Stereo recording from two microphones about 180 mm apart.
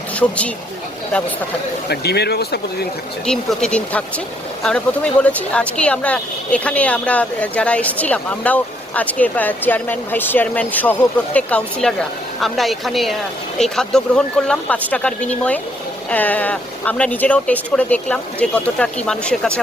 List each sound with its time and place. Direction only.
0.2 s speech: 5° left (ahead or behind)
1.9 s speech: 65° left (ahead or behind)
3.2 s speech: 5° left (ahead or behind)